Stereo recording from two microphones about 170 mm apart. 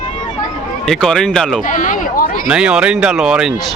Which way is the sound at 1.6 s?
50° left (ahead or behind).